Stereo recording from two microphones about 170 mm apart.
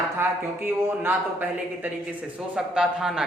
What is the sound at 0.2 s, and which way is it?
Speech, 15° right (ahead or behind).